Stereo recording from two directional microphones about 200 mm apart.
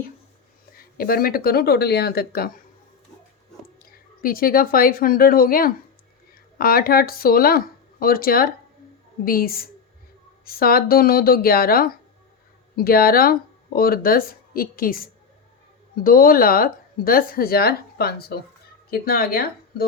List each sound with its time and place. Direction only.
0.8 s speech: 45° left (ahead or behind)
3.8 s speech: 45° left (ahead or behind)
16.0 s speech: 45° left (ahead or behind)